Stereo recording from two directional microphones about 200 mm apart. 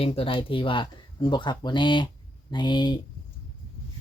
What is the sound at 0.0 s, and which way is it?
Speech, 25° left (ahead or behind).